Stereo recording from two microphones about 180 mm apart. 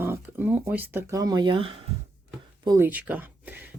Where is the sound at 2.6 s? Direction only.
15° right (ahead or behind).